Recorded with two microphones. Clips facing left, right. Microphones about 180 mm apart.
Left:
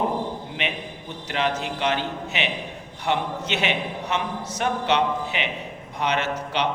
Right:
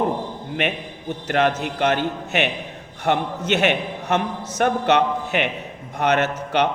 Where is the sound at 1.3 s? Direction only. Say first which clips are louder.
Right 5 dB; 50° right (ahead or behind).